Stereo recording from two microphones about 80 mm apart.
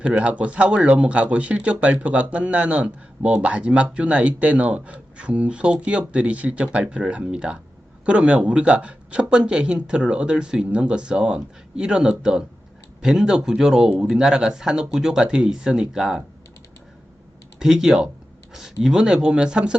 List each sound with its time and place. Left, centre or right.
0.0 s speech: centre
17.6 s speech: centre